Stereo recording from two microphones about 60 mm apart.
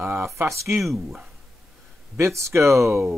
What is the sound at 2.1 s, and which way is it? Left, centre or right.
Speech, right.